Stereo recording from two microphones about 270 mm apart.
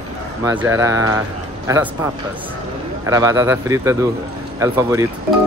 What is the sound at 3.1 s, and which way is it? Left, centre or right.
Speech, centre.